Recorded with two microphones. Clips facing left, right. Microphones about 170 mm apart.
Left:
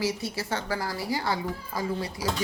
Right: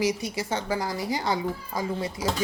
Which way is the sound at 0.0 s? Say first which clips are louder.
Right 3 dB; 15° right (ahead or behind).